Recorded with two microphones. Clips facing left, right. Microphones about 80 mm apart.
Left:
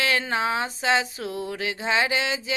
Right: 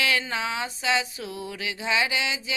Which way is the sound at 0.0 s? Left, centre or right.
Left.